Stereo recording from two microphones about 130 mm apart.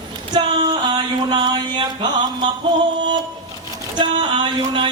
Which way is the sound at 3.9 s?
40° right (ahead or behind).